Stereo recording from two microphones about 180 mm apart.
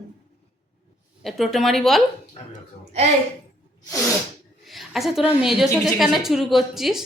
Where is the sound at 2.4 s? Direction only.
40° left (ahead or behind).